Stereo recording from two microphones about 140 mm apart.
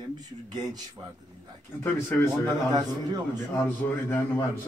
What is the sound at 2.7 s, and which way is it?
Speech, 30° right (ahead or behind).